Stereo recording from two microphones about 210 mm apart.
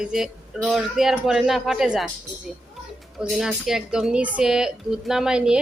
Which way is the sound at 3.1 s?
5° right (ahead or behind).